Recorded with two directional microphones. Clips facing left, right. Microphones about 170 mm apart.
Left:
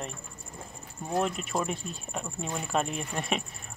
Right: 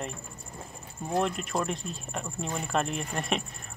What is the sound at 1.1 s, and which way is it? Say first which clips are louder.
Speech: right 1 dB; centre (ahead or behind).